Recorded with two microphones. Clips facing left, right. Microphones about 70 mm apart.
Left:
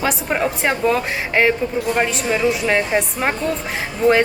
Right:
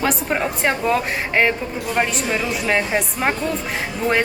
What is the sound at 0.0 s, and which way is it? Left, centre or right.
A woman's voice, centre.